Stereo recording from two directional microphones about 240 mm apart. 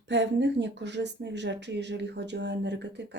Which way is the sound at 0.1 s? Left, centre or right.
Right.